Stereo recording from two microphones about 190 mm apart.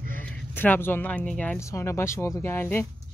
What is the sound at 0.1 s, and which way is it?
Speech, 10° left (ahead or behind).